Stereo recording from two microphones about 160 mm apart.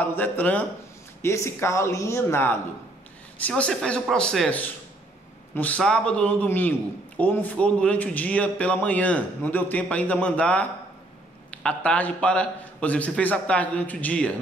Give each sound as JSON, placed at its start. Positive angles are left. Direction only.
{"t": 0.0, "sound": "a man's voice", "side_deg": 10}